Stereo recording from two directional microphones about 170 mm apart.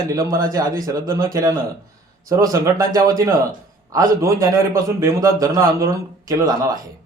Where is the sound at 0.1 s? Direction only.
20° right (ahead or behind).